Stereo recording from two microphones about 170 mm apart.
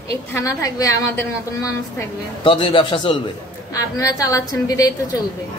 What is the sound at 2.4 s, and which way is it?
A woman's voice, 30° left (ahead or behind).